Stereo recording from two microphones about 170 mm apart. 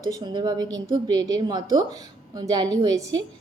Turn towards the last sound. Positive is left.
turn(degrees=-20)  # may be behind; listen again after turning